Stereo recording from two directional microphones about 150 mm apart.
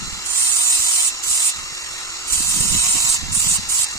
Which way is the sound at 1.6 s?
20° left (ahead or behind).